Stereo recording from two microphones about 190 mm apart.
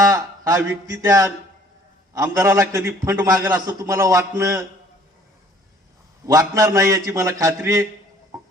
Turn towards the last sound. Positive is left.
turn(degrees=-15)  # may be behind; listen again after turning